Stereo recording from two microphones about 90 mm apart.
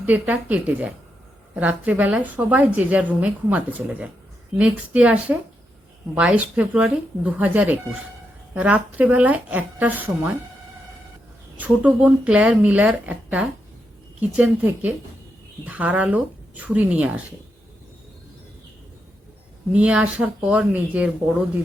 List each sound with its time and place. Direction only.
0.0 s a woman's voice: 15° right (ahead or behind)
11.5 s a woman's voice: 15° right (ahead or behind)
19.7 s a woman's voice: 15° right (ahead or behind)